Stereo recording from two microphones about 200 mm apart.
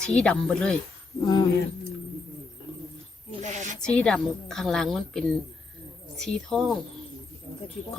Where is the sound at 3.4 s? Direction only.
35° right (ahead or behind).